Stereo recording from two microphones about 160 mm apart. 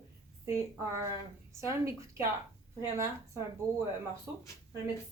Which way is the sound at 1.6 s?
20° right (ahead or behind).